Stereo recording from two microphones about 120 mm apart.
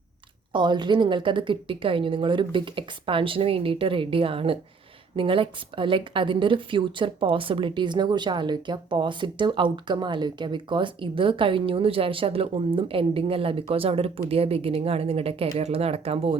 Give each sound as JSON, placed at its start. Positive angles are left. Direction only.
{"t": 0.5, "sound": "a woman's voice", "side_deg": -40}